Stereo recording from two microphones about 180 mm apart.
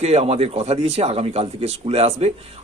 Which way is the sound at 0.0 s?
40° right (ahead or behind).